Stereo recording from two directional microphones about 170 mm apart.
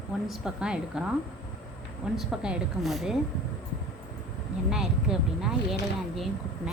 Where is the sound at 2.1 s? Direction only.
5° right (ahead or behind).